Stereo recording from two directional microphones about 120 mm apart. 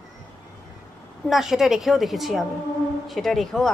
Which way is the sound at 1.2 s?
Centre (ahead or behind).